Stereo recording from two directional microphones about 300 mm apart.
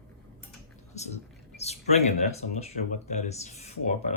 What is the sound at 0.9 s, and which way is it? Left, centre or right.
Speech, left.